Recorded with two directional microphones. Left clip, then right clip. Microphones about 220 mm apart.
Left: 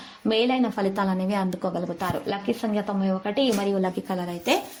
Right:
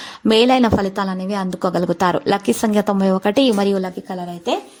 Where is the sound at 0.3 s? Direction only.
40° right (ahead or behind).